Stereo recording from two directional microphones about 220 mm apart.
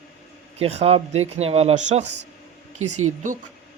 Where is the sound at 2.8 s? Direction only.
75° right (ahead or behind).